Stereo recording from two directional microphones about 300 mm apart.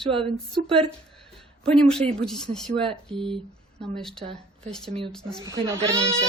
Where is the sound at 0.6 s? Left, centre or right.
Centre.